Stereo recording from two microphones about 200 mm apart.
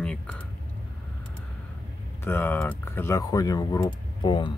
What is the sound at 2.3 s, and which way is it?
Speech, 10° left (ahead or behind).